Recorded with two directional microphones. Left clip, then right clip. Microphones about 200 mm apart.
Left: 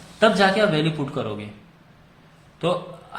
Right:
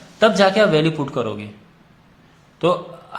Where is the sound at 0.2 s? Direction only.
30° right (ahead or behind).